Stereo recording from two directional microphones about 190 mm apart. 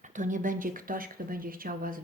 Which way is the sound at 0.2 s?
45° right (ahead or behind).